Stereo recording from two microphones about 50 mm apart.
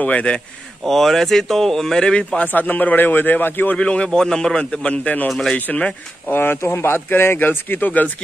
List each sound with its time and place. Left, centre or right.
0.0 s a man's voice: left
0.8 s speech: centre
2.3 s speech: left
3.7 s a man's voice: left
6.3 s speech: left